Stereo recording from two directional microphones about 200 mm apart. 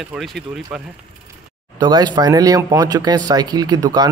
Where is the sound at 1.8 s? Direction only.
20° right (ahead or behind).